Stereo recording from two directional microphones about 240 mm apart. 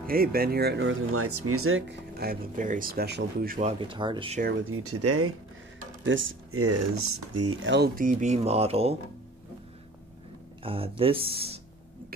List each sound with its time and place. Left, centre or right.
0.0 s speech: right
1.1 s speech: right
3.7 s speech: right
4.6 s speech: right
7.6 s speech: right
10.6 s speech: right